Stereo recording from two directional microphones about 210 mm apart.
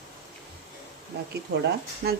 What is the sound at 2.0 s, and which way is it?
Speech, 50° right (ahead or behind).